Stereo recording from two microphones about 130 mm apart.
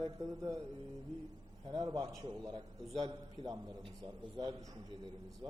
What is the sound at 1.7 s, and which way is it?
A man's voice, 30° right (ahead or behind).